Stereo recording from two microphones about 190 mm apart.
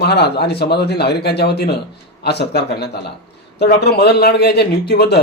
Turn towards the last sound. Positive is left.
turn(degrees=60)  # may be behind; listen again after turning